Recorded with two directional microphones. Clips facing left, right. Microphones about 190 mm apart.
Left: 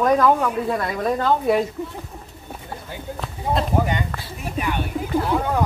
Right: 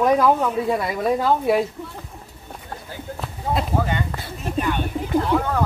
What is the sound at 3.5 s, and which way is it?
Speech, 15° left (ahead or behind).